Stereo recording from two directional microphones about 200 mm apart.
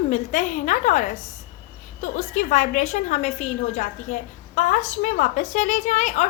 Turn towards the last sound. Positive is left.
turn(degrees=35)  # may be behind; listen again after turning